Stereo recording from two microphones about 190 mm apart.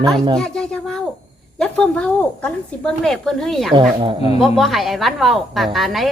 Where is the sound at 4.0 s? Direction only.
25° right (ahead or behind).